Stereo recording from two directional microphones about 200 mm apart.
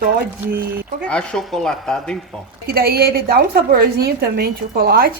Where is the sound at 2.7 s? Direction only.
50° right (ahead or behind).